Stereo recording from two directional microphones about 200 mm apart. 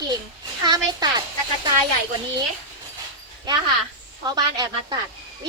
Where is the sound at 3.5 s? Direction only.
20° right (ahead or behind).